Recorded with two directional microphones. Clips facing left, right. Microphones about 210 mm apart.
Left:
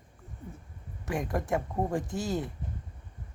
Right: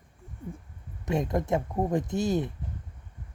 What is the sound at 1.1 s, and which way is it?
Speech, 20° right (ahead or behind).